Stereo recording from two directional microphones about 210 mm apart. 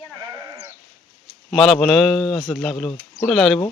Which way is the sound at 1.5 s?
Centre (ahead or behind).